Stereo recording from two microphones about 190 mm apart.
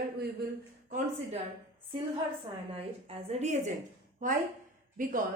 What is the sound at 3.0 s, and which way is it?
A woman's voice, 35° right (ahead or behind).